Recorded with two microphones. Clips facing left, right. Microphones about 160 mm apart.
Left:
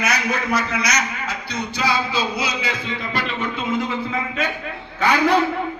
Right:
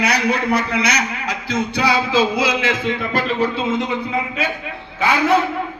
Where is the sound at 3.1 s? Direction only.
40° right (ahead or behind).